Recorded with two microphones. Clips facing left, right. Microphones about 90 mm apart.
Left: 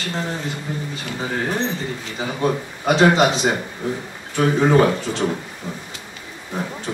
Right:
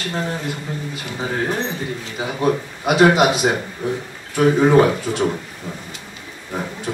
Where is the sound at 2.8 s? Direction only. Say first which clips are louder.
Right 1 dB; 10° right (ahead or behind).